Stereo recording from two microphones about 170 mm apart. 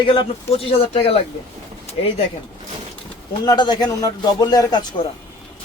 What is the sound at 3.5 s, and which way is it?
Speech, 25° left (ahead or behind).